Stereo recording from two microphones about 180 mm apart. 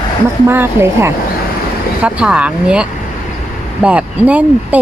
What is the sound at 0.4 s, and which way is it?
Speech, 15° right (ahead or behind).